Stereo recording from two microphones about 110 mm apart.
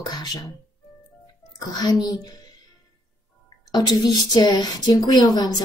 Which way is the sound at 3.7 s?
40° left (ahead or behind).